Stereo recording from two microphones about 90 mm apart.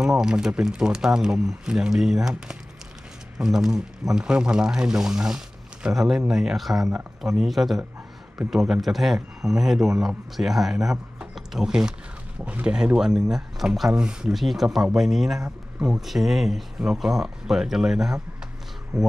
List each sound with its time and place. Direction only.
0.0 s speech: 5° right (ahead or behind)